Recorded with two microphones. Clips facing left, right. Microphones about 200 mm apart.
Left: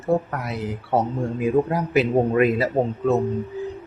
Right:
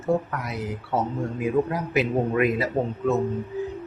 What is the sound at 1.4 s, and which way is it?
A man's voice, 30° left (ahead or behind).